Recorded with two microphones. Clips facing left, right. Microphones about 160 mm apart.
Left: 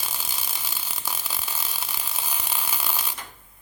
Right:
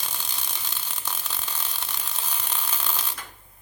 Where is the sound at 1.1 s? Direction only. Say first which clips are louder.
Left 1 dB; 10° left (ahead or behind).